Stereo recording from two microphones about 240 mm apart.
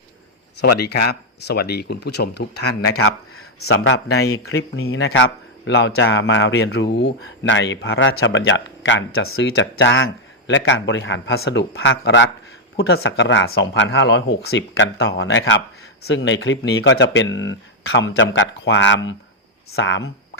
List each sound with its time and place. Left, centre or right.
0.8 s speech: left
3.3 s a man's voice: left
3.9 s speech: left
4.4 s speech: left